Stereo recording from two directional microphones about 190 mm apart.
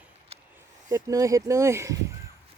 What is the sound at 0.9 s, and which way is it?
Speech, 15° right (ahead or behind).